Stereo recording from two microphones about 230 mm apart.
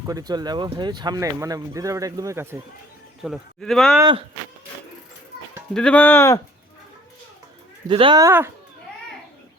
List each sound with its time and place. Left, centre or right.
0.0 s speech: centre
3.2 s speech: centre
5.7 s speech: centre
7.9 s speech: right